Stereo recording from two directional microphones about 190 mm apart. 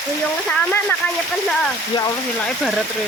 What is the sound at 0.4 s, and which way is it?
Speech, 10° left (ahead or behind).